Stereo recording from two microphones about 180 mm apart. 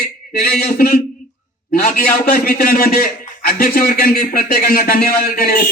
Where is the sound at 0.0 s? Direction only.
60° left (ahead or behind).